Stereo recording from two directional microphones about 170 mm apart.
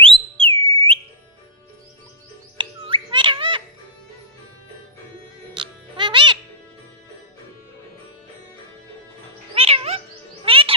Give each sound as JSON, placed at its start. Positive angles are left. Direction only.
{"t": 0.0, "sound": "whistle", "side_deg": -30}
{"t": 2.6, "sound": "bird", "side_deg": -30}
{"t": 5.5, "sound": "music", "side_deg": -30}
{"t": 9.6, "sound": "cat", "side_deg": -35}
{"t": 10.4, "sound": "chirp", "side_deg": -30}